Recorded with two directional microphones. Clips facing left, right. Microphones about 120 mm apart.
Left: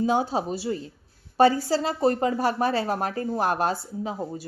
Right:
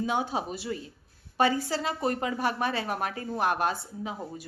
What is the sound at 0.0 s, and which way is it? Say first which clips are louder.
A woman's voice: left 5 dB; 35° left (ahead or behind).